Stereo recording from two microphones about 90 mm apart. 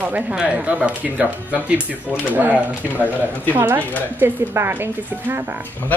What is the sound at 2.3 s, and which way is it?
A woman's voice, 20° right (ahead or behind).